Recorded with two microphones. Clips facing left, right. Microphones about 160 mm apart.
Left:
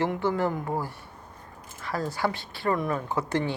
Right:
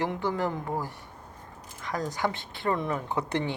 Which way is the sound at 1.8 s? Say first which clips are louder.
Left 1 dB; 15° right (ahead or behind).